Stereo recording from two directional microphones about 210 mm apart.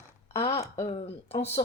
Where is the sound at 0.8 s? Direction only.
30° left (ahead or behind).